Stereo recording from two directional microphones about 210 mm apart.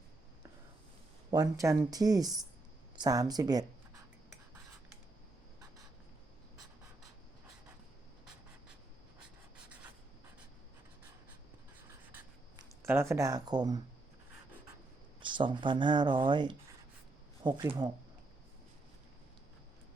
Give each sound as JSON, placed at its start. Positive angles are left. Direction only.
{"t": 1.3, "sound": "a woman's voice", "side_deg": -15}
{"t": 12.1, "sound": "writing", "side_deg": -10}
{"t": 15.2, "sound": "speech", "side_deg": -25}